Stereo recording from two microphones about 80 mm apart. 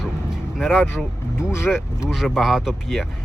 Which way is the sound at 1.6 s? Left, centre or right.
Centre.